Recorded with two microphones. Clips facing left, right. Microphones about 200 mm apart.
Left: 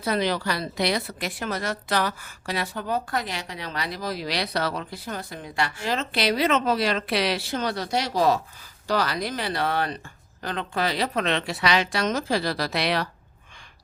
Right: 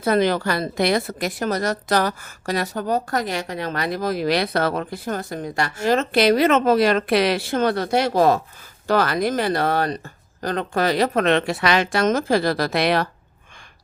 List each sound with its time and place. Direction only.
0.0 s a woman's voice: 50° right (ahead or behind)